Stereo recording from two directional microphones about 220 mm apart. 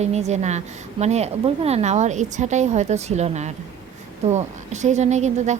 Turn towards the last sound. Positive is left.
turn(degrees=-30)  # may be behind; listen again after turning